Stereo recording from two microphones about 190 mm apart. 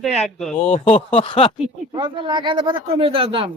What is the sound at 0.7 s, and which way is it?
Speech, 35° left (ahead or behind).